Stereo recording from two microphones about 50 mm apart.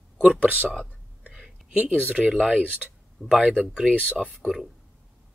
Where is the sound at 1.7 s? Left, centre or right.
Right.